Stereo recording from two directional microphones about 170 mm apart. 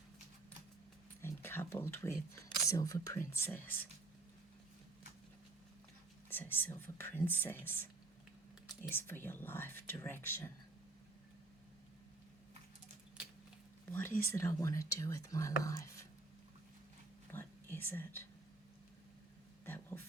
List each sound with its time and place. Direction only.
1.2 s speech: 15° left (ahead or behind)
6.3 s speech: 10° left (ahead or behind)
13.9 s speech: 10° left (ahead or behind)
17.3 s whispering: 10° left (ahead or behind)
19.6 s a sound: 10° left (ahead or behind)